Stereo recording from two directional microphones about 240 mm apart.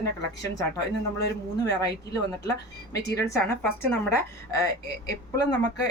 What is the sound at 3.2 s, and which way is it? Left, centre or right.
A woman's voice, centre.